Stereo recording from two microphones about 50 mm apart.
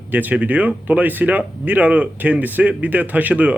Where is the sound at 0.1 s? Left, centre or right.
Right.